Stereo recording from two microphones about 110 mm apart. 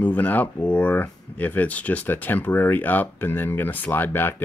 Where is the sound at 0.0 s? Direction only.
15° left (ahead or behind).